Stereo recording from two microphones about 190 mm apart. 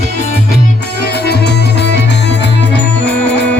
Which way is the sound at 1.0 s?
60° left (ahead or behind).